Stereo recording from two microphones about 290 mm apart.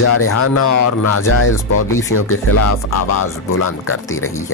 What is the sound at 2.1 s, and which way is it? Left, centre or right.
Speech, left.